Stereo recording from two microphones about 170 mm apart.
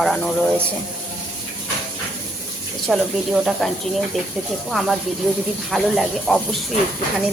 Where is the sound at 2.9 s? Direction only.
Centre (ahead or behind).